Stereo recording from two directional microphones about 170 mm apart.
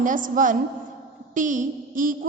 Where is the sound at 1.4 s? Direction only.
50° right (ahead or behind).